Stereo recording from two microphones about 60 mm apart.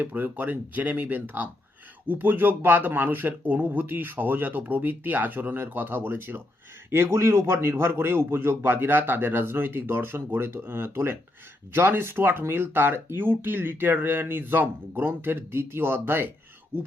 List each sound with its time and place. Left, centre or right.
0.0 s speech: right